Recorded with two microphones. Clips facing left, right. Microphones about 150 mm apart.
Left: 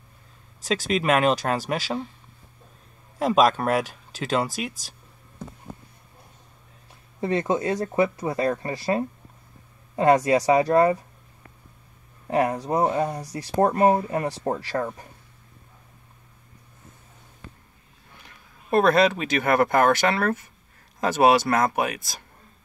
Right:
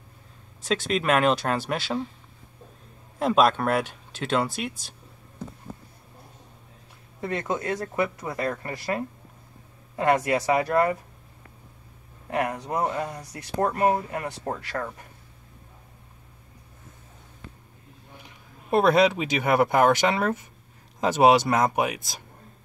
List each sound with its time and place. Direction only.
0.6 s a sound: 40° left (ahead or behind)
1.2 s speech: 40° left (ahead or behind)
3.2 s speech: 40° left (ahead or behind)
7.2 s speech: 25° left (ahead or behind)
12.3 s speech: 30° left (ahead or behind)
18.2 s speech: 15° right (ahead or behind)